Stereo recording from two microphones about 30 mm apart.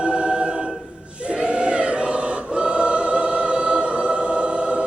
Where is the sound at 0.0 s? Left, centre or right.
Right.